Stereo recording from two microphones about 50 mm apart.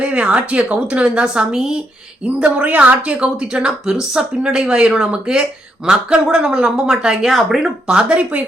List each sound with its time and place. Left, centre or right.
0.0 s a woman's voice: right
2.2 s a woman's voice: right; by 8.0 s centre
8.1 s a woman's voice: right